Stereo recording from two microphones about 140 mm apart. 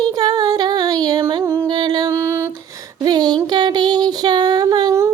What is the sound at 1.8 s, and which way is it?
Music, 30° right (ahead or behind).